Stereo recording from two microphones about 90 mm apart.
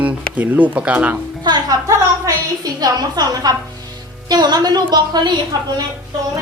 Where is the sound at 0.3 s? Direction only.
20° right (ahead or behind).